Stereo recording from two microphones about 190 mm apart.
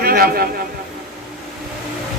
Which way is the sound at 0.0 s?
50° right (ahead or behind).